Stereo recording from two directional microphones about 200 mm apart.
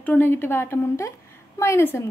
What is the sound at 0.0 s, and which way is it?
A woman's voice, 10° left (ahead or behind).